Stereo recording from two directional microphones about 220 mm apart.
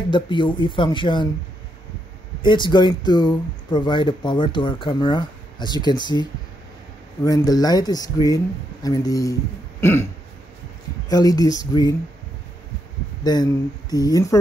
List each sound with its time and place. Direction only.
0.1 s speech: 20° left (ahead or behind)
2.4 s speech: 20° left (ahead or behind)
7.2 s speech: 15° left (ahead or behind)
11.1 s speech: 15° left (ahead or behind)
13.2 s speech: 20° left (ahead or behind)